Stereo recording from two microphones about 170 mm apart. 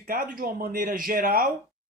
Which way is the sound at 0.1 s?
55° right (ahead or behind).